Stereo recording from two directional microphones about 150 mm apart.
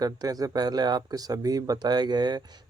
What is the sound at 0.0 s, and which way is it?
Speech, 25° right (ahead or behind).